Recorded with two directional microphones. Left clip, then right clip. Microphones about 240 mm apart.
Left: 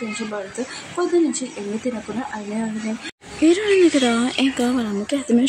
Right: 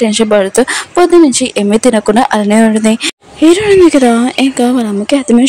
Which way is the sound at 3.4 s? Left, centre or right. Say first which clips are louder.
Right 9 dB; right.